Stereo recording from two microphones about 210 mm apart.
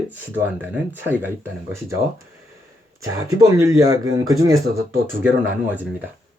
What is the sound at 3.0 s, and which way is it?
Speech, 15° right (ahead or behind).